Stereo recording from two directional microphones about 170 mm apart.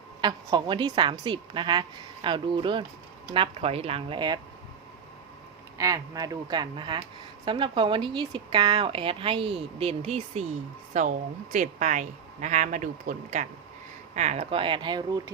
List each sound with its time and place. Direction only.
0.2 s a woman's voice: 25° right (ahead or behind)
5.7 s a woman's voice: 20° right (ahead or behind)